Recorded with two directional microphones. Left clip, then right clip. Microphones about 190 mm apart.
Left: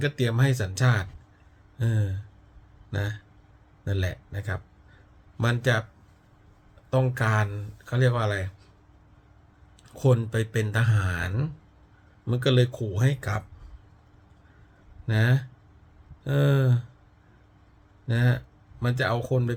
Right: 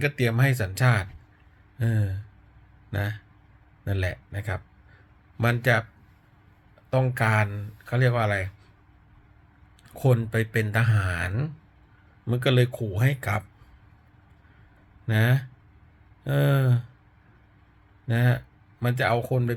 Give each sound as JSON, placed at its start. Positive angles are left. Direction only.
{"t": 0.0, "sound": "speech", "side_deg": 20}
{"t": 6.9, "sound": "speech", "side_deg": 20}
{"t": 9.8, "sound": "speech", "side_deg": 20}
{"t": 15.0, "sound": "speech", "side_deg": 15}
{"t": 18.1, "sound": "speech", "side_deg": 15}